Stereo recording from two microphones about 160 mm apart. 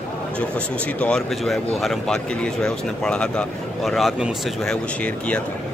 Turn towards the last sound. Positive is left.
turn(degrees=10)  # may be behind; listen again after turning